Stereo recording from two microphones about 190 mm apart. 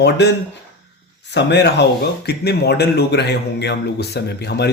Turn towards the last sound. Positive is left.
turn(degrees=60)  # may be behind; listen again after turning